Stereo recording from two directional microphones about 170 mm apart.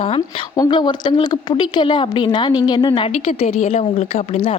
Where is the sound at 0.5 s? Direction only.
25° left (ahead or behind).